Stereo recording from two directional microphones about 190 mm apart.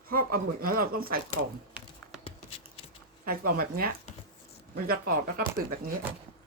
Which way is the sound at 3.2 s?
50° right (ahead or behind).